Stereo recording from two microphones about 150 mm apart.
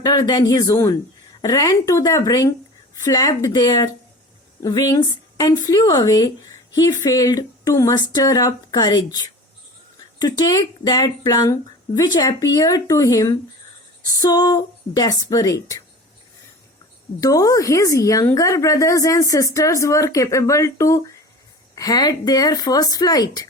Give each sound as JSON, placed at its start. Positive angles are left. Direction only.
{"t": 0.0, "sound": "speech", "side_deg": 25}
{"t": 17.2, "sound": "speech", "side_deg": 25}